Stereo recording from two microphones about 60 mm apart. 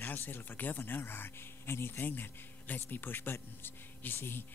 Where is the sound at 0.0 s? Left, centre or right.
Left.